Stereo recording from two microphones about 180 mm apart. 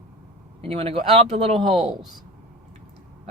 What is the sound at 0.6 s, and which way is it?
Speech, 30° right (ahead or behind).